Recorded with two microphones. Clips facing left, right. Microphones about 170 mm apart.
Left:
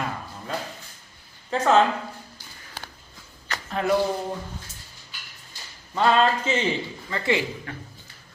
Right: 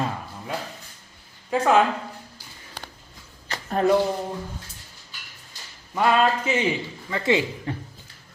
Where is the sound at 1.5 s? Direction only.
10° right (ahead or behind).